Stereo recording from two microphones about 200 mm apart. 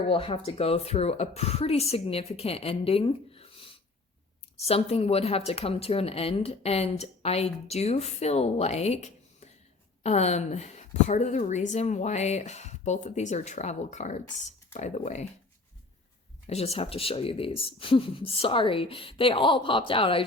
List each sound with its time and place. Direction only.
0.1 s speech: 25° left (ahead or behind)
4.7 s speech: 30° left (ahead or behind)
16.5 s speech: 30° left (ahead or behind)